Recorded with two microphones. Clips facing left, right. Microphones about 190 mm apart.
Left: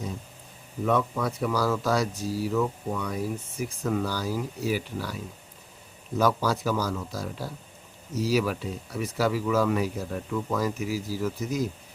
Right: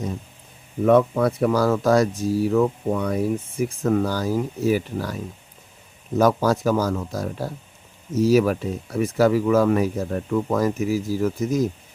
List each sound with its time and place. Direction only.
0.9 s speech: 55° right (ahead or behind)
6.1 s speech: 50° right (ahead or behind)